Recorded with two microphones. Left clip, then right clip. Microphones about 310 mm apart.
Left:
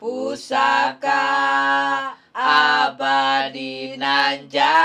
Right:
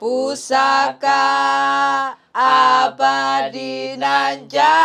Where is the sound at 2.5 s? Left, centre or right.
Centre.